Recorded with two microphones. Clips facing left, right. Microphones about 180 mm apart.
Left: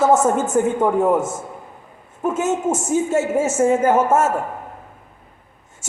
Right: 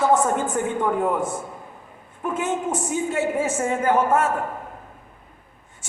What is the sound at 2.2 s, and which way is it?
A woman's voice, 25° left (ahead or behind).